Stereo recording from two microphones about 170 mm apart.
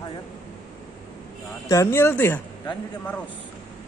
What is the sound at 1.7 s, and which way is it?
Speech, 15° left (ahead or behind).